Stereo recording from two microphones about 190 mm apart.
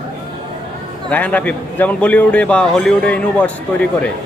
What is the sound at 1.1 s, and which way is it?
Speech, 10° left (ahead or behind).